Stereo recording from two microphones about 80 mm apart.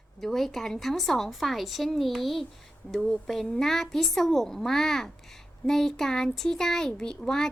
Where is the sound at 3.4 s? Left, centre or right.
Centre.